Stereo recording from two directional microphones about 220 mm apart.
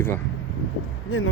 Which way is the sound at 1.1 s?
70° left (ahead or behind).